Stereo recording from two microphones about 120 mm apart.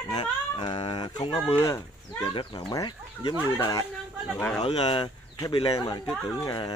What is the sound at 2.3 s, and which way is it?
Speech, 45° left (ahead or behind).